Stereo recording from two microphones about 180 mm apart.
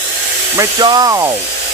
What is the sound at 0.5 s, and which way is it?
Speech, 20° right (ahead or behind).